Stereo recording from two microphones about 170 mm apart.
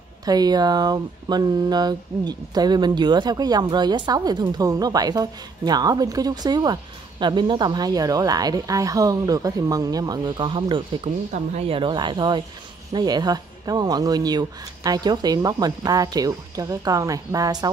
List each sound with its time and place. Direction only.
0.2 s speech: 25° right (ahead or behind)
11.3 s speech: 40° right (ahead or behind); by 17.6 s 20° right (ahead or behind)